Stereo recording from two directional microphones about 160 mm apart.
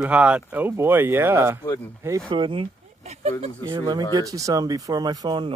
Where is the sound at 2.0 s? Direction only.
20° right (ahead or behind).